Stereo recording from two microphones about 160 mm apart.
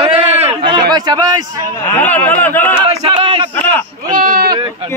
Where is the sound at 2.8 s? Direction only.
35° right (ahead or behind).